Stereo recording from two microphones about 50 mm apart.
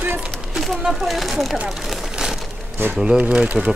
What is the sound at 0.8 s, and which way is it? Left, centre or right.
Speech, centre.